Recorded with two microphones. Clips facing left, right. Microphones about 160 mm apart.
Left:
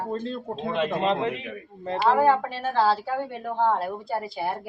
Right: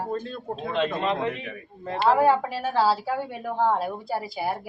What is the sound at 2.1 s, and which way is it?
A woman's voice, 10° right (ahead or behind).